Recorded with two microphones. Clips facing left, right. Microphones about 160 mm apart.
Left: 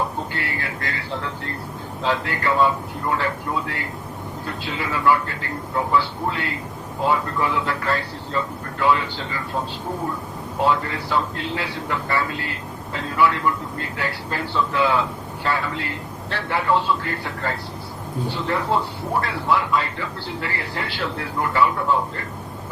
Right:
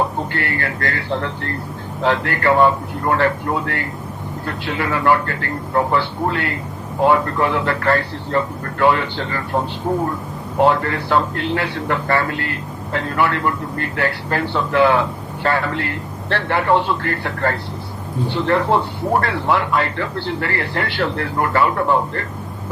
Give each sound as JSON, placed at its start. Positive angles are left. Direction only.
{"t": 0.3, "sound": "a man's voice", "side_deg": -65}
{"t": 10.6, "sound": "a man's voice", "side_deg": -60}